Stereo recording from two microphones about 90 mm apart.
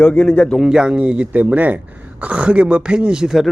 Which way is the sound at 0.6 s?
10° right (ahead or behind).